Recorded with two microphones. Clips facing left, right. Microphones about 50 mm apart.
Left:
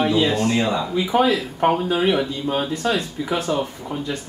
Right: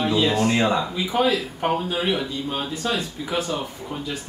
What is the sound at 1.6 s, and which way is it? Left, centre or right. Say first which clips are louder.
Speech: left 5 dB; centre.